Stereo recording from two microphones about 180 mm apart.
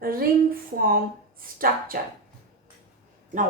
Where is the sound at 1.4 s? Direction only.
55° right (ahead or behind).